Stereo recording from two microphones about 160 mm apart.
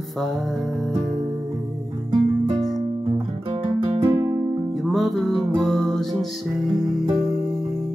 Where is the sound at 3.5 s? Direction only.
35° right (ahead or behind).